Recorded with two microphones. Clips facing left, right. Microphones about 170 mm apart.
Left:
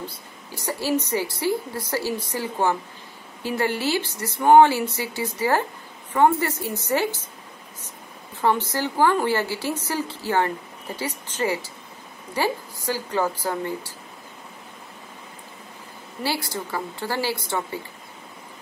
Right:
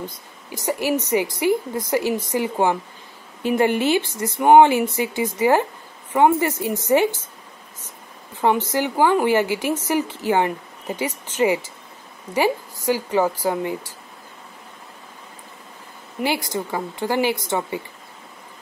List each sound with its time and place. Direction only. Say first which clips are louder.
0.7 s a woman's voice: right 3 dB; 15° right (ahead or behind)
8.4 s a woman's voice: right 3 dB; 15° right (ahead or behind)
16.2 s a woman's voice: right 4 dB; 20° right (ahead or behind)